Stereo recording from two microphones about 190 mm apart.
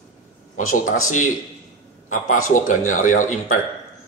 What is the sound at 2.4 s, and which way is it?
Speech, 45° left (ahead or behind).